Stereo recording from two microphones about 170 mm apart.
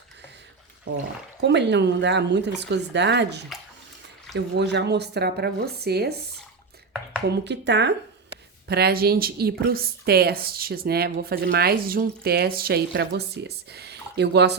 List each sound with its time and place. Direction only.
1.4 s a woman's voice: 90° right; by 6.1 s 70° right (ahead or behind)
7.3 s speech: 90° right
8.6 s a woman's voice: 70° right (ahead or behind)